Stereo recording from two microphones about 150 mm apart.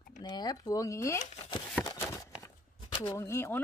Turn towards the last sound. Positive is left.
turn(degrees=15)  # may be behind; listen again after turning